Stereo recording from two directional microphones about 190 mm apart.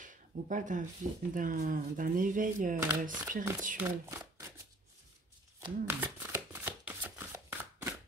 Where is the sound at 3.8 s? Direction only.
10° right (ahead or behind).